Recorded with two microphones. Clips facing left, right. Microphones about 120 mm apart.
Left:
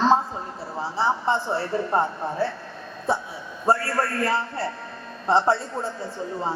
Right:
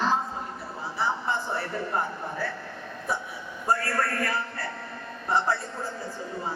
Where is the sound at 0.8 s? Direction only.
30° left (ahead or behind).